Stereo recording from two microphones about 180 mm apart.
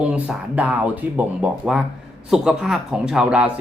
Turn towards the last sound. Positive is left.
turn(degrees=-5)  # may be behind; listen again after turning